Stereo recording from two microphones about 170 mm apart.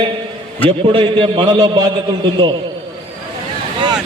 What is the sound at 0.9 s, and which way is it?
A man's voice, 30° right (ahead or behind).